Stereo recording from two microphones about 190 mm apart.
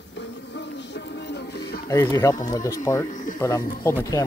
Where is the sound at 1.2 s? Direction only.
60° left (ahead or behind).